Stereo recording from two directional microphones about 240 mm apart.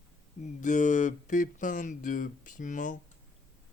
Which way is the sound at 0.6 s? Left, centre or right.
Left.